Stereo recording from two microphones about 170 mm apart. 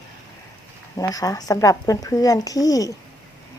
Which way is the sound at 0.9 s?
20° left (ahead or behind).